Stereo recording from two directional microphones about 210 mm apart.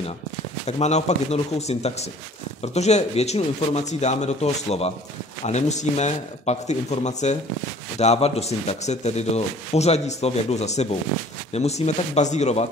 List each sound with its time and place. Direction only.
0.7 s speech: 30° left (ahead or behind)